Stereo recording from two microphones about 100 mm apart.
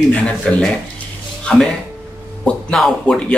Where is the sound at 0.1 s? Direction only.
10° left (ahead or behind).